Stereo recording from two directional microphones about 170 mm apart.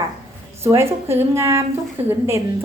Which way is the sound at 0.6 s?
15° right (ahead or behind).